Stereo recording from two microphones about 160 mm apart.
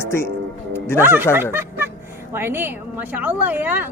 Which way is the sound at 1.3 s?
15° right (ahead or behind).